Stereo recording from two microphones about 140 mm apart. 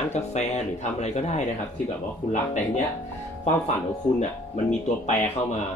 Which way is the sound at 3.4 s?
60° left (ahead or behind).